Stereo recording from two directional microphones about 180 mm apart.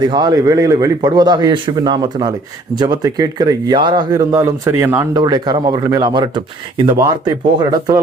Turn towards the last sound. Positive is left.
turn(degrees=-20)  # may be behind; listen again after turning